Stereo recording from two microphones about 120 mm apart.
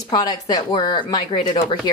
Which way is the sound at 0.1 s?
35° left (ahead or behind).